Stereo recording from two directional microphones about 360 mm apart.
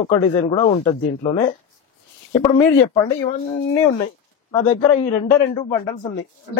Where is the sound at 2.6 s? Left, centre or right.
Left.